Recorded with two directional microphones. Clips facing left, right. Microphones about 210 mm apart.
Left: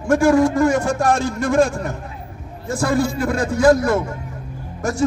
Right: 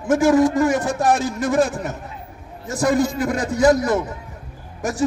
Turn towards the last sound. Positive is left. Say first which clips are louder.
# left 2 dB
turn(degrees=-15)  # may be behind; listen again after turning